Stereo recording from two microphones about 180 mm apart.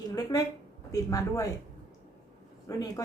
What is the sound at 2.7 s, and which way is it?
Speech, 20° left (ahead or behind).